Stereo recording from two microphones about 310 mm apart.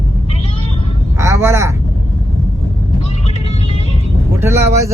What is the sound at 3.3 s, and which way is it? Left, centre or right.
Vehicle, centre.